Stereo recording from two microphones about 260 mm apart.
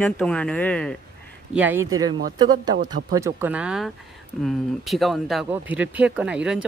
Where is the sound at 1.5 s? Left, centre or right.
Centre.